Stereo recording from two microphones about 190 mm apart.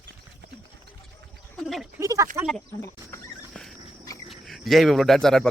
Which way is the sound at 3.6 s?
5° left (ahead or behind).